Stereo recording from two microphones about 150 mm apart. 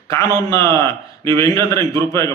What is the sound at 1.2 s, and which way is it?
Speech, 20° left (ahead or behind).